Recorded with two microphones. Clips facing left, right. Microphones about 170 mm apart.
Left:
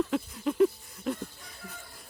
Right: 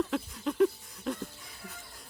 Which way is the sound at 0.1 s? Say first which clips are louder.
Left 3 dB; centre (ahead or behind).